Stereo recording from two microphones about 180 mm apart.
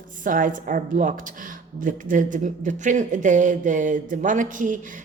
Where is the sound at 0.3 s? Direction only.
50° right (ahead or behind).